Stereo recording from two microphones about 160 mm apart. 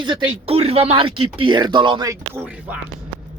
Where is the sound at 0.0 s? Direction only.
30° right (ahead or behind).